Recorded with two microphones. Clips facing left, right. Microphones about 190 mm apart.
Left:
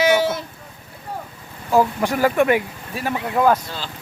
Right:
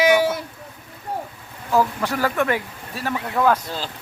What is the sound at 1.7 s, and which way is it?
Speech, 20° left (ahead or behind).